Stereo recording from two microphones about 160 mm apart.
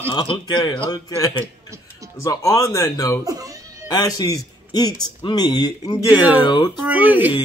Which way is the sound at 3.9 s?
25° left (ahead or behind).